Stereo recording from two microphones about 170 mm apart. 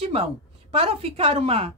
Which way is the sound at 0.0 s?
35° right (ahead or behind).